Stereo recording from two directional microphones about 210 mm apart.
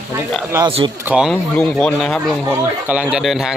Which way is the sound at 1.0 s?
5° right (ahead or behind).